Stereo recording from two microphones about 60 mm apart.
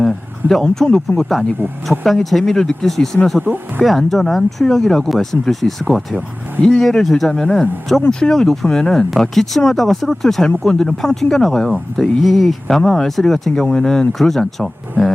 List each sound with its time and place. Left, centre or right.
0.0 s speech: centre
3.5 s speech: right
3.8 s speech: centre